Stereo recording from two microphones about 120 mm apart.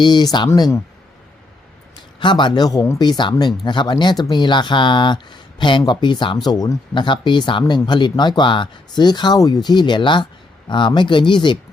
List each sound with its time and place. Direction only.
0.0 s speech: 35° left (ahead or behind)
2.1 s speech: 40° left (ahead or behind)